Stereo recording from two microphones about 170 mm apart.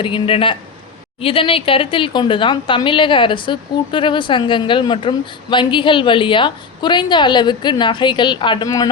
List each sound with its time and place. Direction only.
0.0 s a woman's voice: 30° left (ahead or behind)